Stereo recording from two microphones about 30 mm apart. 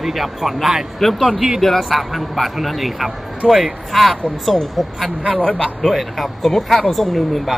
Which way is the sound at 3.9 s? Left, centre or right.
Centre.